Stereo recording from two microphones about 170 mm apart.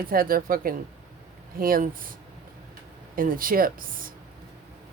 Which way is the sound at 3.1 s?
55° right (ahead or behind).